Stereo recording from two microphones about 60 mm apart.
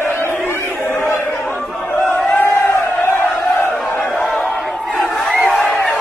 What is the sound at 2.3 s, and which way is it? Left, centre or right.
Crowd, left.